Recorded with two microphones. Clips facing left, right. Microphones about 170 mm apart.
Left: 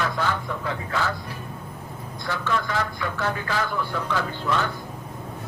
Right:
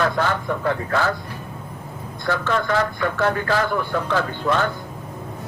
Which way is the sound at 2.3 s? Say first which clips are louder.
Right 5 dB; 55° right (ahead or behind).